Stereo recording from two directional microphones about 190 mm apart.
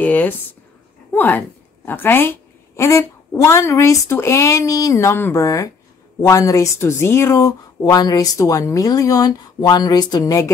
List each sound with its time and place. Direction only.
0.0 s speech: 10° left (ahead or behind)